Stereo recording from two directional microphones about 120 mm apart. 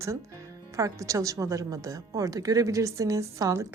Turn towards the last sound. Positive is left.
turn(degrees=-25)  # may be behind; listen again after turning